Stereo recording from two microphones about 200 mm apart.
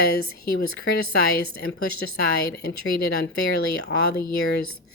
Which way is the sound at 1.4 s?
50° left (ahead or behind).